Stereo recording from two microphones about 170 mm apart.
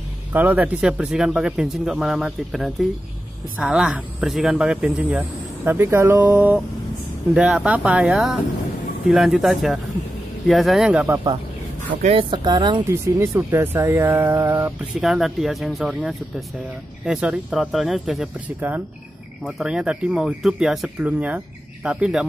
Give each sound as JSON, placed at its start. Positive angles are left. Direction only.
{"t": 0.3, "sound": "speech", "side_deg": -10}
{"t": 5.7, "sound": "speech", "side_deg": -15}
{"t": 12.0, "sound": "speech", "side_deg": -35}
{"t": 12.9, "sound": "speech", "side_deg": -15}
{"t": 15.0, "sound": "speech", "side_deg": 0}